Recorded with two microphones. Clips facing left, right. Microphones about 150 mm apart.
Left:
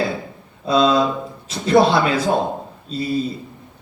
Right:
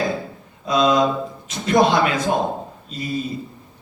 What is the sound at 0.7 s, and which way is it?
Speech, 30° left (ahead or behind).